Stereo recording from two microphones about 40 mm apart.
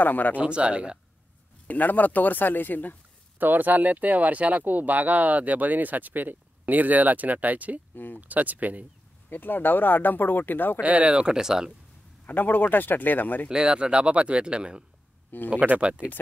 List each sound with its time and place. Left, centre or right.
0.0 s speech: left
0.4 s speech: right
1.7 s speech: left
3.3 s speech: right
7.9 s speech: left
8.2 s speech: right
9.3 s speech: left
10.8 s speech: right; by 11.7 s centre
12.3 s speech: left
13.5 s speech: right
15.5 s speech: right
15.8 s speech: right